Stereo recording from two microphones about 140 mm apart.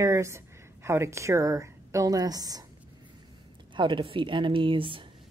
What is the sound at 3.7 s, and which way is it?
Speech, 35° right (ahead or behind).